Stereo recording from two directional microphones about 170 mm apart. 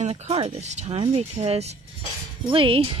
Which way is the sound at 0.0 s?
40° right (ahead or behind).